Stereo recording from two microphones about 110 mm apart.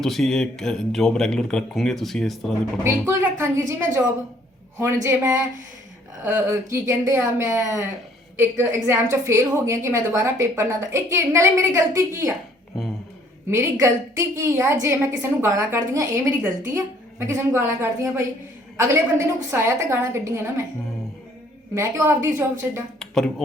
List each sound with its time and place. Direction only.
0.0 s a man's voice: 5° left (ahead or behind)
2.8 s a woman's voice: 25° right (ahead or behind)
5.0 s a woman's voice: 25° right (ahead or behind)
13.5 s a woman's voice: 25° right (ahead or behind)
16.3 s a woman's voice: 15° right (ahead or behind)
21.8 s a woman's voice: 25° right (ahead or behind)
23.0 s music: 5° left (ahead or behind)